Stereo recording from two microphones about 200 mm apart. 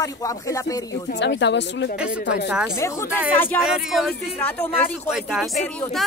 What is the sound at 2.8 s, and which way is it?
Speech, 15° left (ahead or behind).